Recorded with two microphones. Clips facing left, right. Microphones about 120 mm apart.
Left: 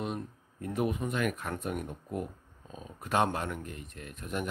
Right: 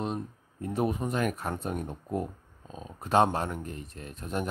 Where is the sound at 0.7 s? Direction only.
30° right (ahead or behind).